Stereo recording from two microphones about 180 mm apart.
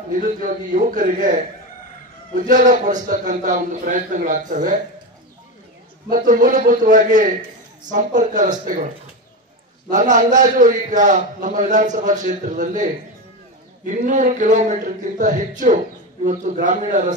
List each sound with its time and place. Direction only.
0.1 s a man's voice: 50° right (ahead or behind)
6.0 s a man's voice: 50° right (ahead or behind)
9.8 s a man's voice: 45° right (ahead or behind)
13.8 s a man's voice: 45° right (ahead or behind)